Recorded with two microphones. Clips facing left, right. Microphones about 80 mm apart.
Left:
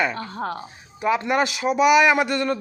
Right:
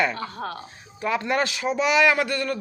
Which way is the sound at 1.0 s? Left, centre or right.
Centre.